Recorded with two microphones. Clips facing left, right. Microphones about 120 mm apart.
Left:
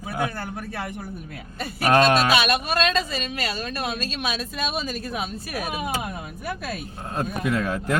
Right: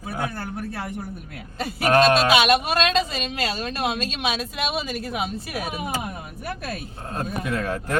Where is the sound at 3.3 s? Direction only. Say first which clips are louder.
Right 2 dB; 30° right (ahead or behind).